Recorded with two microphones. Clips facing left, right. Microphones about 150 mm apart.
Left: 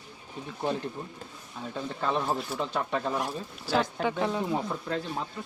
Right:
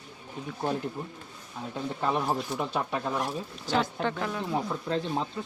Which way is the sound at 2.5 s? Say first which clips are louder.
Even; 15° right (ahead or behind).